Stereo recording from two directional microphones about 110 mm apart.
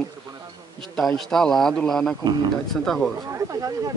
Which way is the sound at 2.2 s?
40° right (ahead or behind).